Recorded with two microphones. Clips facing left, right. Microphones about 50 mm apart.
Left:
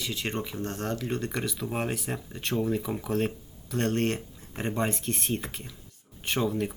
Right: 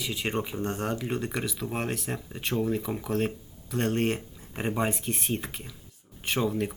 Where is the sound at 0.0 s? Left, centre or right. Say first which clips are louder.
Right 2 dB; centre.